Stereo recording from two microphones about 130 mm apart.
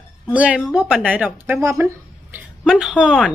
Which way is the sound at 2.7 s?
5° right (ahead or behind).